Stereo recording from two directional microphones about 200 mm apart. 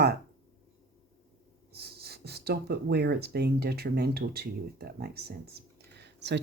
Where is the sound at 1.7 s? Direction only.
50° right (ahead or behind).